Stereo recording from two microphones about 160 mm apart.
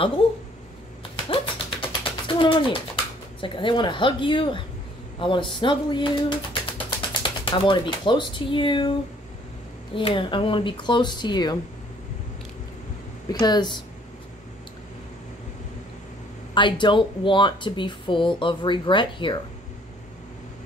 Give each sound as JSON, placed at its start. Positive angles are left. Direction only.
{"t": 1.3, "sound": "a sound", "side_deg": 30}
{"t": 3.3, "sound": "speech", "side_deg": 30}
{"t": 9.9, "sound": "speech", "side_deg": 30}
{"t": 13.3, "sound": "speech", "side_deg": 25}
{"t": 16.5, "sound": "speech", "side_deg": 30}